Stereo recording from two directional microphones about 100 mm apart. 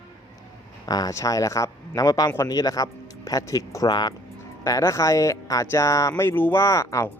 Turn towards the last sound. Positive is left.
turn(degrees=30)  # may be behind; listen again after turning